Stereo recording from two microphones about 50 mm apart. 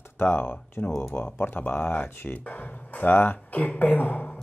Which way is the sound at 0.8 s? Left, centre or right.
Left.